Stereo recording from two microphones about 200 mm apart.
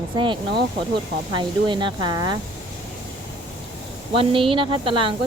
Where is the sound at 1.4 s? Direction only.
25° right (ahead or behind).